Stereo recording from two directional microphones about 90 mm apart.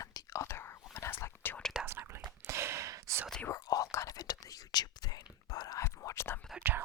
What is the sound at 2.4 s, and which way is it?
Gasp, 30° right (ahead or behind).